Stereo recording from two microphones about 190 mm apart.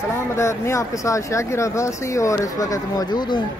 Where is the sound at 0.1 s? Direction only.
15° left (ahead or behind).